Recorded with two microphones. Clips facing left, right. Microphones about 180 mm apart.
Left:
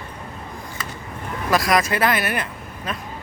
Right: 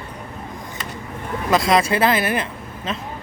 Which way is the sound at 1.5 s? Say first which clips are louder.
Right 2 dB; 25° right (ahead or behind).